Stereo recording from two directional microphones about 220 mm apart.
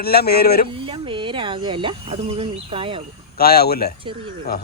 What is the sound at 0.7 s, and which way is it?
Speech, 25° right (ahead or behind).